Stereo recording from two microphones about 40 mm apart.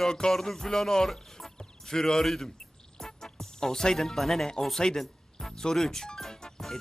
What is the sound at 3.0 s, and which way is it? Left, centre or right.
Music, centre.